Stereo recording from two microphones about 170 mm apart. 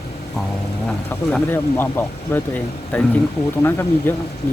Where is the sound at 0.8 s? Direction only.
5° left (ahead or behind).